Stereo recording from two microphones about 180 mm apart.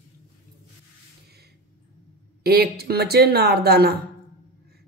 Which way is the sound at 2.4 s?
60° right (ahead or behind).